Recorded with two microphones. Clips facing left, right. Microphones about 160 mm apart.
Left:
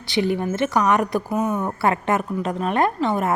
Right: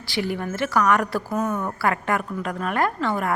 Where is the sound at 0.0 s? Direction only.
20° left (ahead or behind).